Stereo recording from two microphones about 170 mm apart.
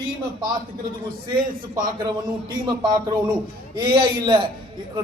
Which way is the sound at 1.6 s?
55° right (ahead or behind).